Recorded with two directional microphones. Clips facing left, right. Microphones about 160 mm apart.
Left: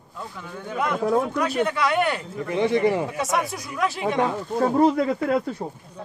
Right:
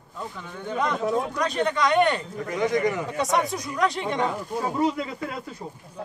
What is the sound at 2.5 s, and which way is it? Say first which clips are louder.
Speech: left 3 dB; 30° left (ahead or behind).